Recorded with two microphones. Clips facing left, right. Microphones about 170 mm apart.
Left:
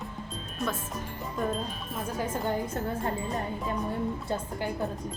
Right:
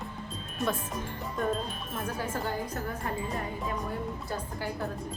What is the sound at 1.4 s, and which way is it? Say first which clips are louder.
Speech: even; centre (ahead or behind).